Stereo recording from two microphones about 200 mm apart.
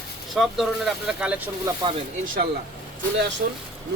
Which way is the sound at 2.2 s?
45° right (ahead or behind).